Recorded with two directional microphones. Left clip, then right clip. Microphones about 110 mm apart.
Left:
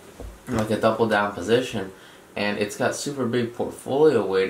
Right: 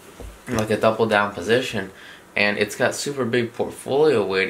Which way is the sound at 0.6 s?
30° right (ahead or behind).